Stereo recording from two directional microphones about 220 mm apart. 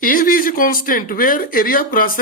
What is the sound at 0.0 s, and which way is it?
Speech, 40° left (ahead or behind).